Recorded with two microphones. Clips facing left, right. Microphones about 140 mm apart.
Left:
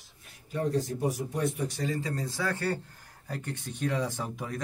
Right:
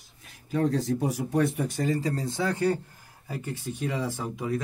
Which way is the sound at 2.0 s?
30° right (ahead or behind).